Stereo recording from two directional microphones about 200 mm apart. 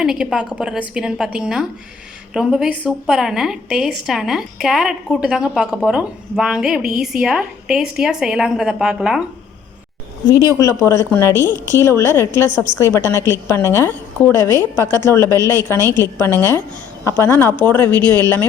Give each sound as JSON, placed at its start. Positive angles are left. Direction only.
{"t": 0.0, "sound": "a woman's voice", "side_deg": -5}
{"t": 10.2, "sound": "a woman's voice", "side_deg": 15}